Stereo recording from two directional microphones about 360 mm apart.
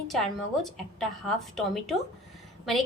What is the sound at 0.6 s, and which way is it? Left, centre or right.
A woman's voice, centre.